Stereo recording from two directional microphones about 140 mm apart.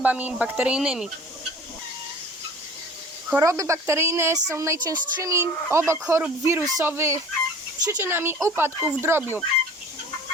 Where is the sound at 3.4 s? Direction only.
25° right (ahead or behind).